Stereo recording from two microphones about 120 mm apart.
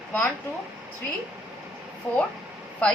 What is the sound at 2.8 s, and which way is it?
Speech, 10° left (ahead or behind).